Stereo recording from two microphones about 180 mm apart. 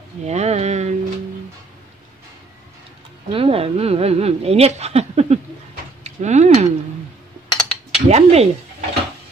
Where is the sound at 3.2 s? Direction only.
30° right (ahead or behind).